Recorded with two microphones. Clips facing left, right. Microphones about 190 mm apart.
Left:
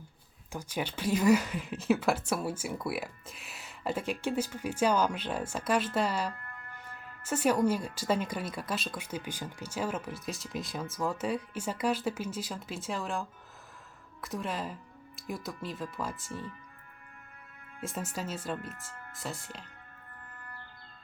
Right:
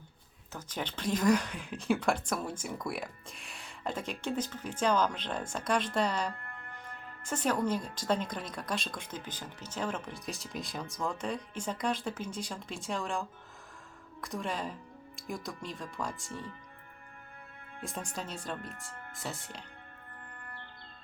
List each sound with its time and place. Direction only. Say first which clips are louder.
0.5 s speech: left 3 dB; 10° left (ahead or behind)
6.3 s music: right 1 dB; 30° right (ahead or behind)
7.3 s speech: left 4 dB; 10° left (ahead or behind)
17.7 s speech: left 3 dB; 5° left (ahead or behind)
20.4 s music: even; 30° right (ahead or behind)